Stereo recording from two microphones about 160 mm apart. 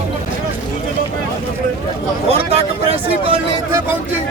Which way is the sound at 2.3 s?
40° right (ahead or behind).